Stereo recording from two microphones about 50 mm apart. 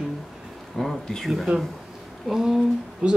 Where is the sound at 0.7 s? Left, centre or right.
Centre.